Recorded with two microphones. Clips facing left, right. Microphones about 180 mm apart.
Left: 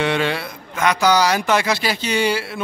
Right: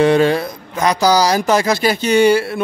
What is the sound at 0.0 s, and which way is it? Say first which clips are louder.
A man's voice: right 8 dB; 40° right (ahead or behind).